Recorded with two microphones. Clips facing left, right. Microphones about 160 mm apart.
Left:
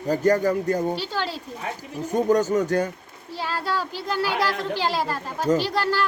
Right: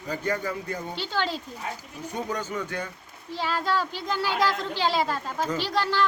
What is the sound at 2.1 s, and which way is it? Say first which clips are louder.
Speech: left 11 dB; 45° left (ahead or behind).